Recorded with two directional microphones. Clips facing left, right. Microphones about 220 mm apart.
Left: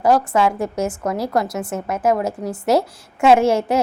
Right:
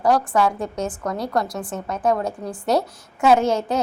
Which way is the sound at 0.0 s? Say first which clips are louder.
Left 2 dB; 25° left (ahead or behind).